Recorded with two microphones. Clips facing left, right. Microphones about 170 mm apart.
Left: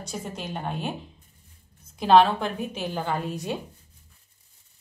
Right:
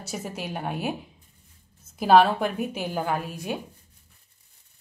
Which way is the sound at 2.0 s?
10° right (ahead or behind).